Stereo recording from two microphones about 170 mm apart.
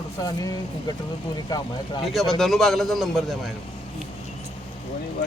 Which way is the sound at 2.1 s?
Centre (ahead or behind).